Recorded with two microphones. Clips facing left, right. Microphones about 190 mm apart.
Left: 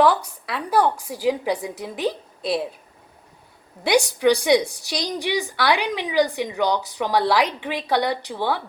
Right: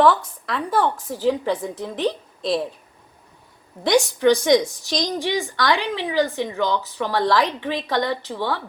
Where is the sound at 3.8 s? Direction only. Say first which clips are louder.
Right 1 dB; 15° left (ahead or behind).